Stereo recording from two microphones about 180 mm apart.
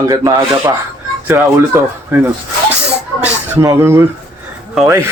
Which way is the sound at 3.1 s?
10° right (ahead or behind).